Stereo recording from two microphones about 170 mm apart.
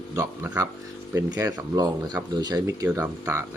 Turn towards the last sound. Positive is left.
turn(degrees=-15)  # may be behind; listen again after turning